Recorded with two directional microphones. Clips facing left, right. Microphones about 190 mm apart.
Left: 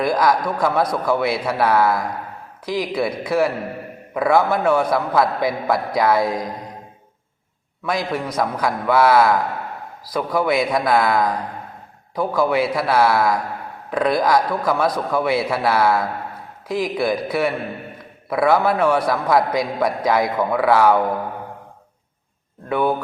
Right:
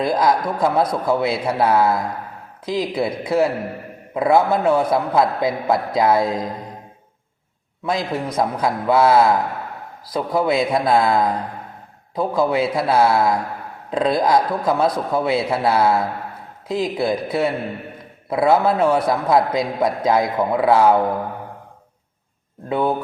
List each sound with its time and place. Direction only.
0.0 s a man's voice: 25° right (ahead or behind)
7.9 s a man's voice: 25° right (ahead or behind)
22.7 s a man's voice: 25° right (ahead or behind)